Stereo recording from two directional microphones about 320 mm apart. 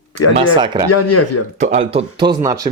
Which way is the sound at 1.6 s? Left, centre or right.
Right.